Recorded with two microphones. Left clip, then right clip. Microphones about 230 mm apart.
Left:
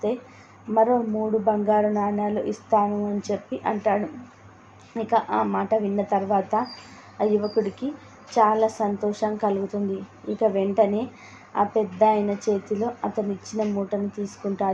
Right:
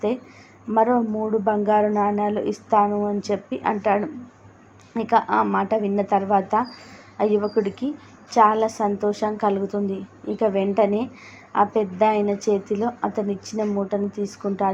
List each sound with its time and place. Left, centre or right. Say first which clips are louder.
0.7 s speech: right 1 dB; right